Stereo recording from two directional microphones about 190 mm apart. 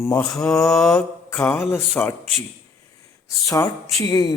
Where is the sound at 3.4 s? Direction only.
15° left (ahead or behind).